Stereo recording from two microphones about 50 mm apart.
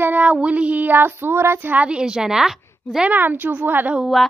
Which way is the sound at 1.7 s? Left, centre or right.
Right.